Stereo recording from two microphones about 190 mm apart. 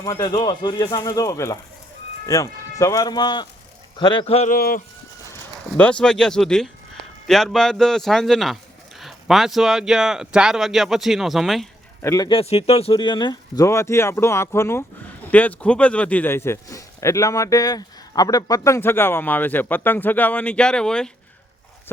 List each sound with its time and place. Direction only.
0.0 s speech: 20° left (ahead or behind)
4.4 s speech: 50° left (ahead or behind)
5.7 s speech: 5° left (ahead or behind)
12.0 s speech: 15° left (ahead or behind)
12.3 s speech: 30° left (ahead or behind); by 21.1 s 5° left (ahead or behind)